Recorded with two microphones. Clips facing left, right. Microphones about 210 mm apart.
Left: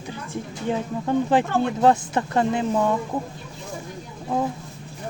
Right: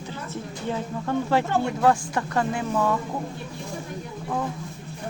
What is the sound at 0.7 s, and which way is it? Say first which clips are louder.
Speech: left 4 dB; 20° left (ahead or behind).